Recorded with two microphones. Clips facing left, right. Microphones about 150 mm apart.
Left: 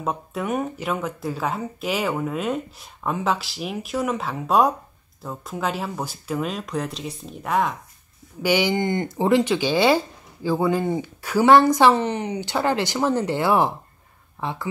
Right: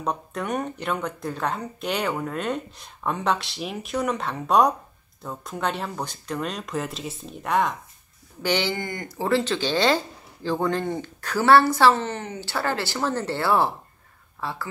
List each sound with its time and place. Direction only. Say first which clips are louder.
0.0 s speech: left 2 dB; 5° left (ahead or behind)
8.4 s speech: left 4 dB; 10° left (ahead or behind)